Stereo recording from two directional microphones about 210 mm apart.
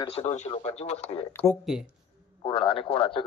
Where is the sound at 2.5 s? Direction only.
25° left (ahead or behind).